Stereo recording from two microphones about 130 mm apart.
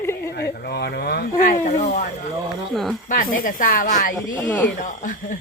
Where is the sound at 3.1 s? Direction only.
90° left.